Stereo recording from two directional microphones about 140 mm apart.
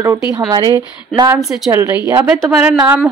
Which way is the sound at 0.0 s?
20° right (ahead or behind).